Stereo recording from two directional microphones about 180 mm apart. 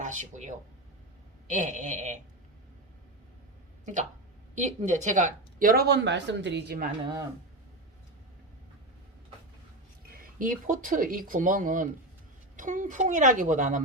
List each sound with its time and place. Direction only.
0.0 s speech: 45° right (ahead or behind)
4.5 s speech: 45° right (ahead or behind); by 6.8 s 70° right (ahead or behind)
10.1 s speech: 50° right (ahead or behind)